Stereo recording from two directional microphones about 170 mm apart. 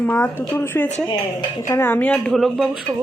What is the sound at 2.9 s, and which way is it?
Music, 20° right (ahead or behind).